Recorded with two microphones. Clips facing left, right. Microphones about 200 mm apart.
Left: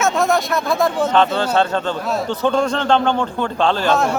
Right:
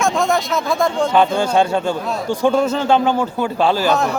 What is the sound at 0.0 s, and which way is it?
Speech, centre (ahead or behind).